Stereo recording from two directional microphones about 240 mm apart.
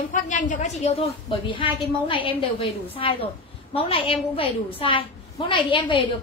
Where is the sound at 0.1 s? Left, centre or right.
Left.